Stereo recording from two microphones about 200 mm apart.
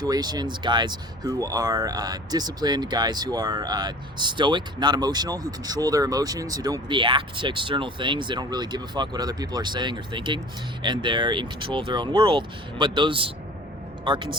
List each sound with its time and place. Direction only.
0.0 s a man's voice: 20° right (ahead or behind)